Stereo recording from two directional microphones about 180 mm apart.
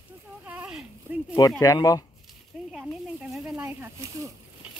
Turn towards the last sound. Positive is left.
turn(degrees=-15)  # may be behind; listen again after turning